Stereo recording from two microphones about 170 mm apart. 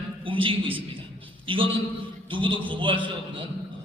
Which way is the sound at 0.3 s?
30° right (ahead or behind).